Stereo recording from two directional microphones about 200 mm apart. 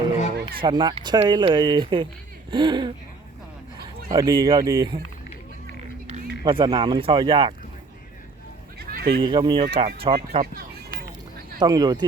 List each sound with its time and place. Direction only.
0.6 s speech: 20° right (ahead or behind)
4.1 s speech: 15° right (ahead or behind)
6.4 s speech: 25° right (ahead or behind)
8.8 s a sound: 50° right (ahead or behind)
9.2 s speech: 25° right (ahead or behind)
11.6 s speech: 20° right (ahead or behind)